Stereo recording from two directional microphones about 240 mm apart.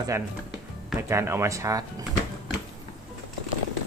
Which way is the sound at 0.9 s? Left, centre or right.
Centre.